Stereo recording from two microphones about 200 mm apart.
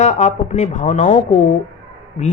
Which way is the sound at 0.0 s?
35° left (ahead or behind).